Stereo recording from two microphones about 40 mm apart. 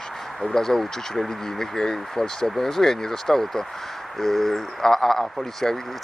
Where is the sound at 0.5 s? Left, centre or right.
Centre.